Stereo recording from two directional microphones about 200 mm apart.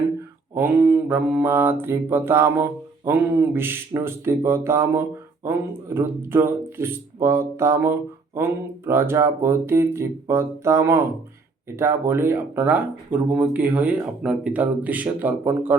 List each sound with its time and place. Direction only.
0.5 s mantra: 10° right (ahead or behind)